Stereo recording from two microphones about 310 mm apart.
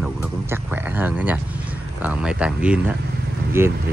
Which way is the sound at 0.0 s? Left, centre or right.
Centre.